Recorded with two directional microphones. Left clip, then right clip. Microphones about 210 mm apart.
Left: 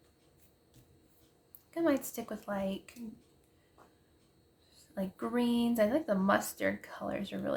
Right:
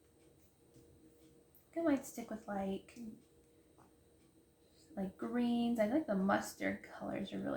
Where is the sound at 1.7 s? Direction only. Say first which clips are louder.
Left 5 dB; 50° left (ahead or behind).